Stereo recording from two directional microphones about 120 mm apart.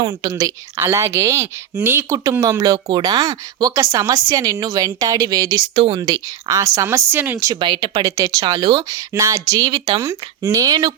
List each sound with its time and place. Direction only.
0.0 s speech: 30° right (ahead or behind)
6.8 s speech: 15° right (ahead or behind)
7.5 s speech: 40° right (ahead or behind)
8.1 s speech: 30° right (ahead or behind)